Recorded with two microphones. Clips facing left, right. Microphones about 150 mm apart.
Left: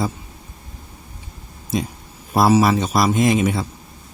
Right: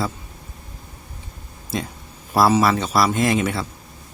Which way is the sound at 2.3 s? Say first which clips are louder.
Left 2 dB; 20° left (ahead or behind).